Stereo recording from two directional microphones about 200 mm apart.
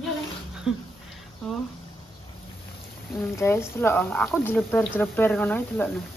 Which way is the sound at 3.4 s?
10° left (ahead or behind).